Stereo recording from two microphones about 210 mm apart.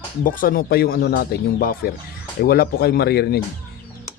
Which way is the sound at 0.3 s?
40° left (ahead or behind).